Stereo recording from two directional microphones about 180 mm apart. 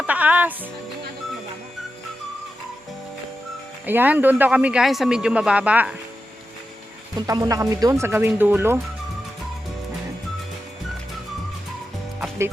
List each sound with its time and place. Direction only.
0.0 s music: 10° right (ahead or behind)
3.8 s speech: 10° right (ahead or behind)
7.2 s speech: 20° right (ahead or behind)